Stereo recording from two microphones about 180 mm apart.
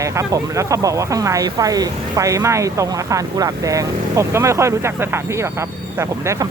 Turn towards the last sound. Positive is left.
turn(degrees=-15)  # may be behind; listen again after turning